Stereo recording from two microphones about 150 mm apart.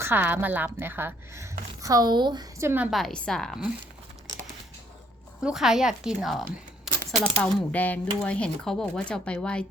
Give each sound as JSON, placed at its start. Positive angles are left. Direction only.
{"t": 0.0, "sound": "speech", "side_deg": -15}
{"t": 2.6, "sound": "a woman's voice", "side_deg": -15}
{"t": 2.9, "sound": "a woman's voice", "side_deg": 5}
{"t": 5.4, "sound": "a woman's voice", "side_deg": -5}
{"t": 6.9, "sound": "a sound", "side_deg": 0}
{"t": 7.3, "sound": "speech", "side_deg": 10}